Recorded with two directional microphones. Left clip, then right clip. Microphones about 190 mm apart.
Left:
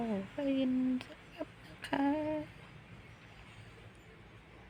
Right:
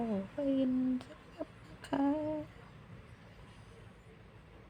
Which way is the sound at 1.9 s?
25° right (ahead or behind).